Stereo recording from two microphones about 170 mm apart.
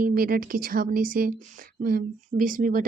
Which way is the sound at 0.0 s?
60° right (ahead or behind).